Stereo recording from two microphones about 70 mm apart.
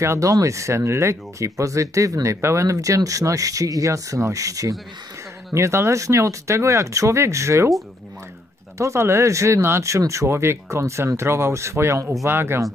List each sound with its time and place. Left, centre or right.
0.0 s speech: right
8.7 s speech: right
12.3 s speech: right